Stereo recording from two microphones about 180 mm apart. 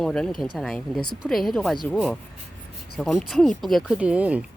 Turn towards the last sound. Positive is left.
turn(degrees=-5)  # may be behind; listen again after turning